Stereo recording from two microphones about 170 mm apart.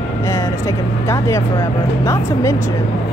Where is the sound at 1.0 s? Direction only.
15° left (ahead or behind).